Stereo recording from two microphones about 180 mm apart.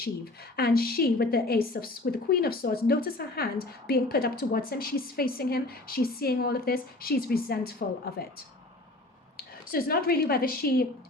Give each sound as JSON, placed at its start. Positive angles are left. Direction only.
{"t": 0.5, "sound": "a woman's voice", "side_deg": 60}
{"t": 9.4, "sound": "speech", "side_deg": 55}